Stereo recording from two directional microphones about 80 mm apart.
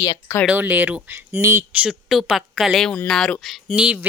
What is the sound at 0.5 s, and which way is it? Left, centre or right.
Speech, right.